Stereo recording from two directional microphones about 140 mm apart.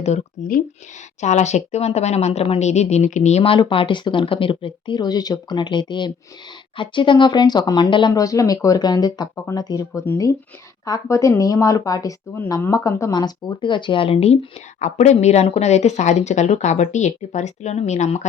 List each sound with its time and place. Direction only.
0.4 s a woman's voice: 55° left (ahead or behind)